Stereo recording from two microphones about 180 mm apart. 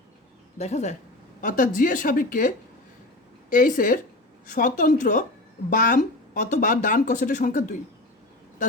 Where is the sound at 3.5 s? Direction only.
50° left (ahead or behind).